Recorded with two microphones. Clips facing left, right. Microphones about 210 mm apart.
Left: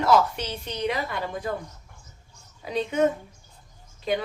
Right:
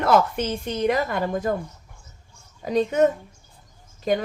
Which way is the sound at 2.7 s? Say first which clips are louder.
Right 5 dB; 45° right (ahead or behind).